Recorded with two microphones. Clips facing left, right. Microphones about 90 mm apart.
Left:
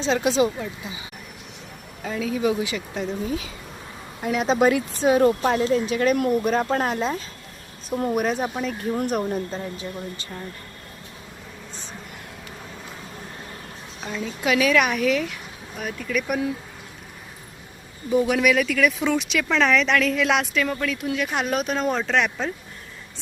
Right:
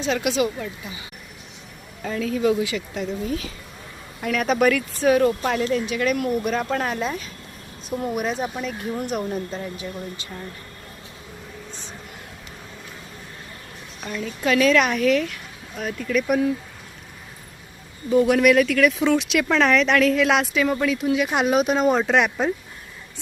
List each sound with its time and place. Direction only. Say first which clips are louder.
0.0 s speech: left 2 dB; 30° left (ahead or behind)
2.0 s a woman's voice: right 2 dB; 10° left (ahead or behind); by 7.3 s 30° left (ahead or behind)
7.9 s speech: left 2 dB; 40° left (ahead or behind)
14.0 s a woman's voice: right 1 dB; 10° left (ahead or behind)
18.1 s speech: right 3 dB; 5° left (ahead or behind)